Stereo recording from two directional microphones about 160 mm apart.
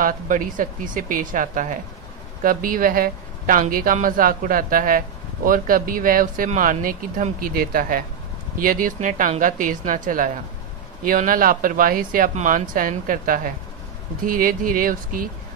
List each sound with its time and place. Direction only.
0.0 s speech: 60° right (ahead or behind)